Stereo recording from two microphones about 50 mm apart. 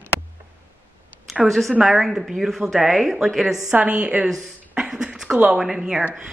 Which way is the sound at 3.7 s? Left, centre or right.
Right.